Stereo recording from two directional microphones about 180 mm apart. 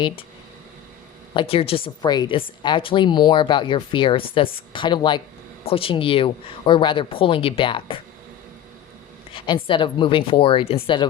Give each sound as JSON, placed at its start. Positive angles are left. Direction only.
{"t": 1.3, "sound": "a woman's voice", "side_deg": 30}
{"t": 9.3, "sound": "a woman's voice", "side_deg": 30}